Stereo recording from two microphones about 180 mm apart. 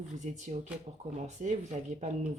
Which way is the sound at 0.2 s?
40° right (ahead or behind).